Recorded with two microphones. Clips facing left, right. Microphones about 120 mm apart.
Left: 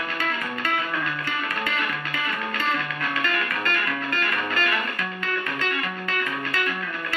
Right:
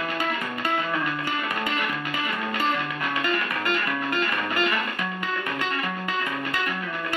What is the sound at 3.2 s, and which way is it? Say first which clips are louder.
Music: right 1 dB; 15° right (ahead or behind).